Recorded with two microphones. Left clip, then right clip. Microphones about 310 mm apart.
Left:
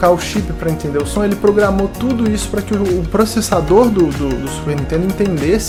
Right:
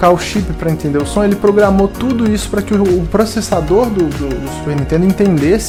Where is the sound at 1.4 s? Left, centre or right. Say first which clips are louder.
Right 2 dB; right.